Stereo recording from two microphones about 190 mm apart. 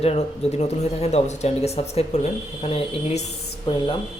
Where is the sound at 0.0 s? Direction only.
35° left (ahead or behind).